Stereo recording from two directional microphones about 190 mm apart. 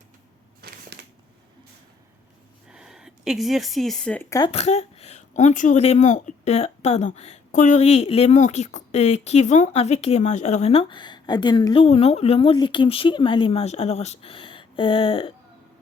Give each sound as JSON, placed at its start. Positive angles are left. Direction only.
{"t": 0.6, "sound": "a sound", "side_deg": -55}
{"t": 2.6, "sound": "speech", "side_deg": -5}
{"t": 4.5, "sound": "speech", "side_deg": 35}